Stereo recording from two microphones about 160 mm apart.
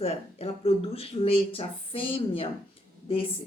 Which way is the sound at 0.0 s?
40° left (ahead or behind).